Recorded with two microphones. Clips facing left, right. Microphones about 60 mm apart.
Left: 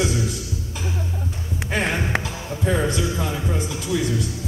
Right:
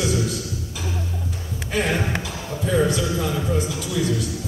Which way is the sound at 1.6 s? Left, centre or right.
Left.